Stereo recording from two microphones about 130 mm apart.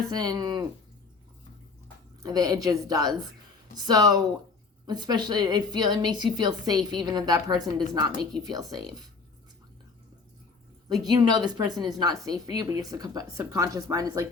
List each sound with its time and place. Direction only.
0.1 s a woman's voice: 30° right (ahead or behind)
2.2 s a woman's voice: 30° right (ahead or behind)
10.8 s a woman's voice: 30° right (ahead or behind)